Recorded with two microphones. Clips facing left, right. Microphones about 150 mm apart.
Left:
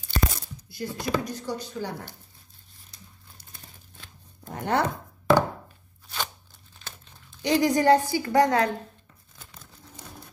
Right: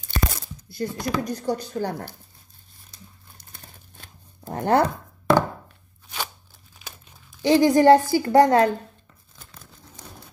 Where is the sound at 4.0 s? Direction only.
40° right (ahead or behind).